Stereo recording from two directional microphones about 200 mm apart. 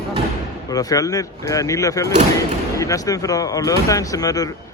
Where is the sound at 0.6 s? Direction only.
20° left (ahead or behind).